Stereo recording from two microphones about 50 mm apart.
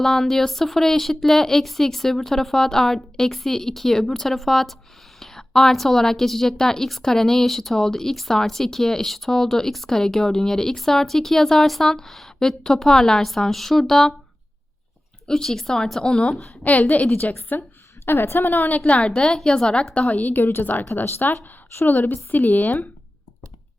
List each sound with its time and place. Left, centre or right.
0.0 s a woman's voice: centre
15.3 s a woman's voice: centre; by 17.6 s left
18.0 s a woman's voice: left
18.9 s a woman's voice: left
19.9 s a woman's voice: left
20.8 s speech: left
21.8 s a woman's voice: left